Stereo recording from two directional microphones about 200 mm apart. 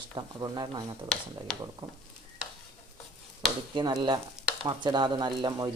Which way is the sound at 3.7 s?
20° right (ahead or behind).